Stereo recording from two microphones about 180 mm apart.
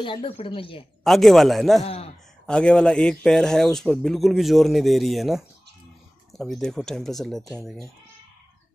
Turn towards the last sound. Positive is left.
turn(degrees=0)  # may be behind; listen again after turning